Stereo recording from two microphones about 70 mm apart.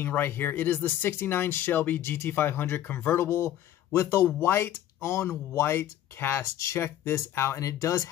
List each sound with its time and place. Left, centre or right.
0.0 s speech: left